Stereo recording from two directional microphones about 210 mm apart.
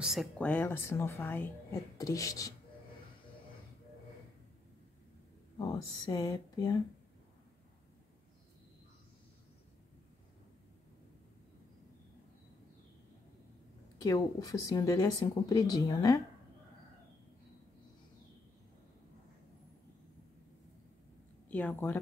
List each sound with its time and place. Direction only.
0.0 s speech: centre (ahead or behind); by 2.5 s 15° left (ahead or behind)
5.6 s speech: 15° left (ahead or behind)
14.0 s speech: 15° left (ahead or behind)
21.5 s speech: 5° left (ahead or behind)